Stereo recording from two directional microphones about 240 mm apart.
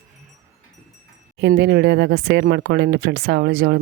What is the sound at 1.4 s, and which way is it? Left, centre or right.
Speech, right.